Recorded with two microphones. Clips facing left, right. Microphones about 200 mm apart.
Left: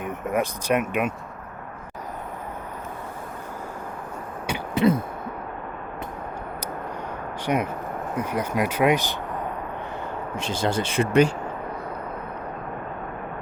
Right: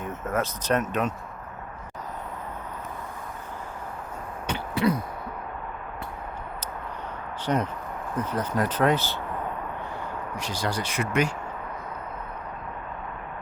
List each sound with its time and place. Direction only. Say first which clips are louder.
0.0 s speech: left 3 dB; 15° left (ahead or behind)
4.4 s a sound: left 4 dB; 15° left (ahead or behind)
7.4 s speech: left 2 dB; 10° left (ahead or behind)
10.3 s speech: left 5 dB; 25° left (ahead or behind)